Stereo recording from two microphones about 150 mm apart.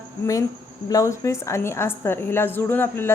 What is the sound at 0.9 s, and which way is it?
A woman's voice, 20° left (ahead or behind).